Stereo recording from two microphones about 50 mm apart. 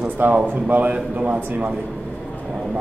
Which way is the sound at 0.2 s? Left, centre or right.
Right.